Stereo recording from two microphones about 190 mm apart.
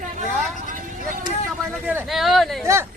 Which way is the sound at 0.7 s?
45° right (ahead or behind).